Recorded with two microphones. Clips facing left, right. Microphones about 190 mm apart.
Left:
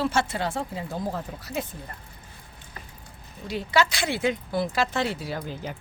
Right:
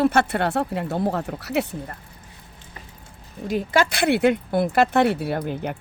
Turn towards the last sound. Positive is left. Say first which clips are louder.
# right 7 dB
turn(degrees=-60)  # may be behind; listen again after turning